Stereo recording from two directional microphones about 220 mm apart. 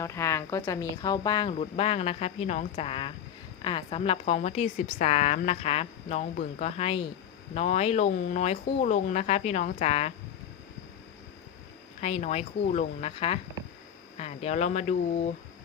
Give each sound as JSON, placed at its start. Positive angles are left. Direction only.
{"t": 0.0, "sound": "a woman's voice", "side_deg": 15}
{"t": 11.9, "sound": "a woman's voice", "side_deg": 30}